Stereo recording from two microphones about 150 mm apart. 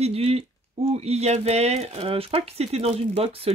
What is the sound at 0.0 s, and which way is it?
Speech, 45° right (ahead or behind).